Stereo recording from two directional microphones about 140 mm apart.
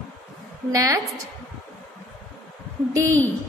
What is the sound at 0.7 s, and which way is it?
Speech, 25° right (ahead or behind).